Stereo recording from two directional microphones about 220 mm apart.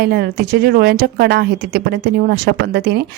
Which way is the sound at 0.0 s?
45° right (ahead or behind).